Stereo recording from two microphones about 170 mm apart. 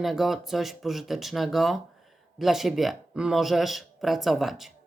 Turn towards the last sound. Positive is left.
turn(degrees=0)  # may be behind; listen again after turning